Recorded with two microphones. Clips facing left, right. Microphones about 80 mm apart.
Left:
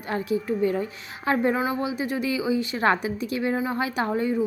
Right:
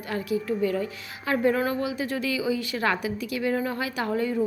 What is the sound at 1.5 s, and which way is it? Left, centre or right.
Speech, centre.